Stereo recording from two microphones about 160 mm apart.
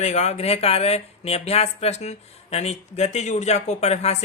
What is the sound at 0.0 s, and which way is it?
Speech, 45° left (ahead or behind).